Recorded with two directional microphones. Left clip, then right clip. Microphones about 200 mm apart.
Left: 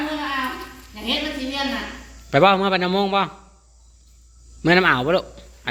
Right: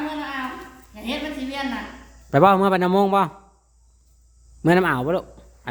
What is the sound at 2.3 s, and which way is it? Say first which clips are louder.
A man's voice: even; 30° right (ahead or behind).